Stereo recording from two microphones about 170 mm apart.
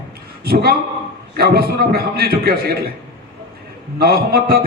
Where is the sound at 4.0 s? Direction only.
65° right (ahead or behind).